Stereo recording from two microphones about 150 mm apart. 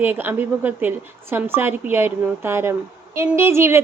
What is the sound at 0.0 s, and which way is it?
A woman's voice, 10° right (ahead or behind).